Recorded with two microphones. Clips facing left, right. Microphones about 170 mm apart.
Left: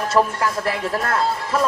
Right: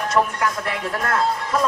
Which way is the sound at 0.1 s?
30° left (ahead or behind).